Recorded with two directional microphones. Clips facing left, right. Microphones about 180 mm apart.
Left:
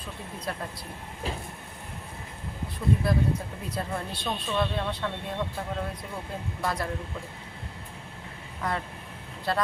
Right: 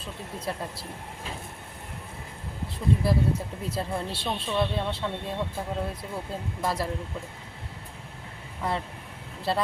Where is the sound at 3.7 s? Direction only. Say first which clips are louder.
Right 2 dB; 30° right (ahead or behind).